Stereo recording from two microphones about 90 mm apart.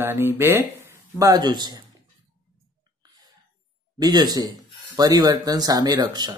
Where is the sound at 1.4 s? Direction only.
55° right (ahead or behind).